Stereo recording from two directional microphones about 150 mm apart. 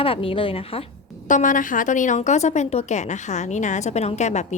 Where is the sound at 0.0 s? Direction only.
40° left (ahead or behind).